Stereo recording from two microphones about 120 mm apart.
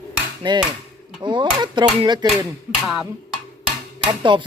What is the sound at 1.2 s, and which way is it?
Speech, 40° right (ahead or behind).